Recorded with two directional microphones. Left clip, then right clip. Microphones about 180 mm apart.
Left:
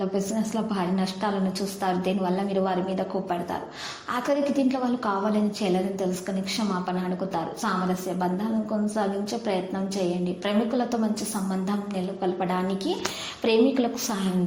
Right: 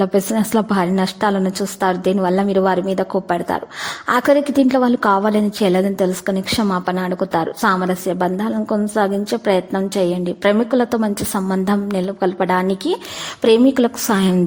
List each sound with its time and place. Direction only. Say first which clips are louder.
0.0 s a woman's voice: right 10 dB; 55° right (ahead or behind)
9.0 s a woman's voice: right 11 dB; 50° right (ahead or behind)